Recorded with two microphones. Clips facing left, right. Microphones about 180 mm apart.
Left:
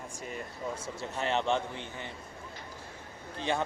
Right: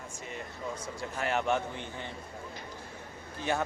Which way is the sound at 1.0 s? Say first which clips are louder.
Even; 25° left (ahead or behind).